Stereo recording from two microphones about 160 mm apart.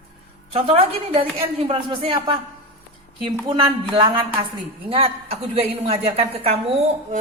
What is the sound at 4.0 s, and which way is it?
A woman's voice, 30° right (ahead or behind).